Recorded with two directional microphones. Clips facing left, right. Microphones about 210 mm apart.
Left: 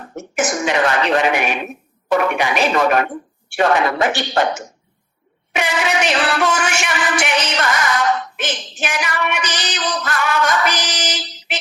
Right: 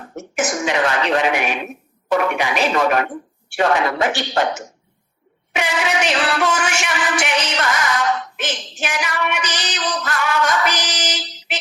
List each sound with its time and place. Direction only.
0.3 s music: 50° left (ahead or behind)
5.5 s a sound: 60° left (ahead or behind)
8.9 s music: 60° left (ahead or behind)